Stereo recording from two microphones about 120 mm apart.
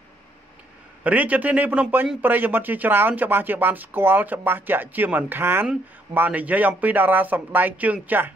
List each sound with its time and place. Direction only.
1.0 s speech: 15° right (ahead or behind)